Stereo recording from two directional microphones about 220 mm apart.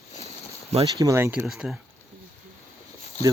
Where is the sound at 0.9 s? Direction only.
15° right (ahead or behind).